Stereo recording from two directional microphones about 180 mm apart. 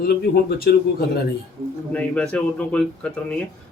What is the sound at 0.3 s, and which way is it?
Speech, 75° left (ahead or behind).